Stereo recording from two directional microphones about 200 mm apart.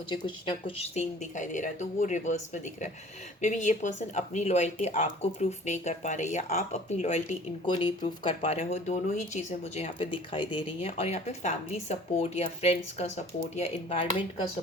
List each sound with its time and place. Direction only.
0.1 s speech: 25° left (ahead or behind)
7.7 s speech: 25° left (ahead or behind)